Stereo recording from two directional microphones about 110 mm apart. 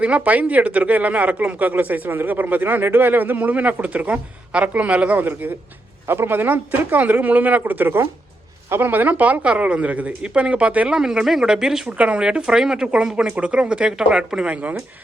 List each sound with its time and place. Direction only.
0.0 s a woman's voice: 15° right (ahead or behind)